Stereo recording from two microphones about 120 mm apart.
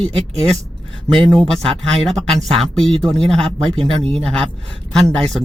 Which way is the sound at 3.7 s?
50° right (ahead or behind).